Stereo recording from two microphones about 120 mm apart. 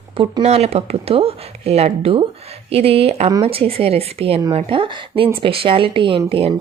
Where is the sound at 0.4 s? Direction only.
60° right (ahead or behind).